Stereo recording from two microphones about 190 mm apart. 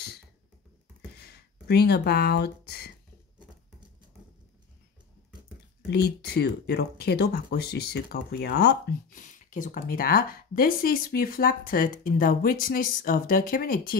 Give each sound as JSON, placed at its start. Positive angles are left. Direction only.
{"t": 1.2, "sound": "speech", "side_deg": 55}
{"t": 5.9, "sound": "speech", "side_deg": 60}